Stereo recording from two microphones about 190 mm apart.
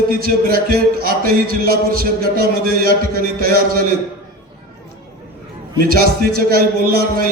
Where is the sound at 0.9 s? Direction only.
50° right (ahead or behind).